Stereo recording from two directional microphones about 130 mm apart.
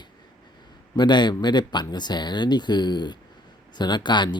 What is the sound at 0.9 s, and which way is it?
Speech, 35° left (ahead or behind).